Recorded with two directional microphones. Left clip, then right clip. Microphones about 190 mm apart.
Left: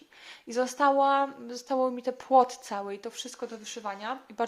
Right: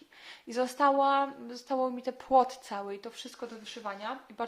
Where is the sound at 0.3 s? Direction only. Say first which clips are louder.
Left 2 dB; 15° left (ahead or behind).